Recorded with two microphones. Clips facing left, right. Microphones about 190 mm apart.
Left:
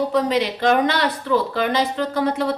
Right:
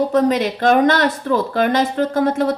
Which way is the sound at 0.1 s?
45° right (ahead or behind).